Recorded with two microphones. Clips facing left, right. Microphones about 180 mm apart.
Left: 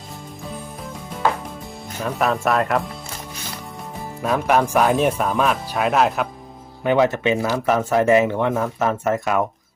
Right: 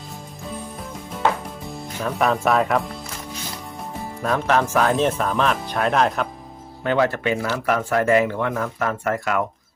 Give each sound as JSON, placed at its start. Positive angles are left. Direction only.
{"t": 2.0, "sound": "speech", "side_deg": 0}
{"t": 4.2, "sound": "speech", "side_deg": 5}
{"t": 6.8, "sound": "speech", "side_deg": 15}